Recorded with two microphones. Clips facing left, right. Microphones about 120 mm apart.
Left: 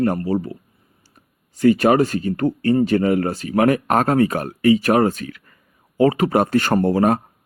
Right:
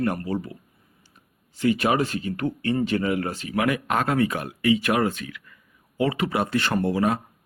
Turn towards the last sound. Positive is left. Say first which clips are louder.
# left 6 dB
turn(degrees=45)  # may be behind; listen again after turning